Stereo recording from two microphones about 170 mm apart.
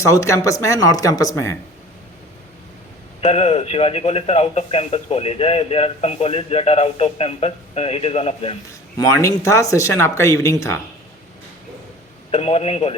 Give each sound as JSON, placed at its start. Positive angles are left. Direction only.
{"t": 0.0, "sound": "speech", "side_deg": 15}
{"t": 3.2, "sound": "a man's voice", "side_deg": 35}
{"t": 9.0, "sound": "speech", "side_deg": 20}
{"t": 12.3, "sound": "a man's voice", "side_deg": 35}